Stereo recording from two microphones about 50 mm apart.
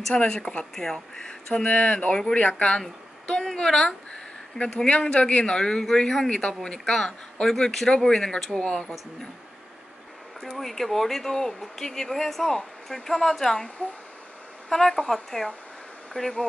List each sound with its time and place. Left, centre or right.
0.1 s speech: left
0.7 s speech: centre
1.5 s speech: left
10.6 s speech: centre
14.7 s speech: centre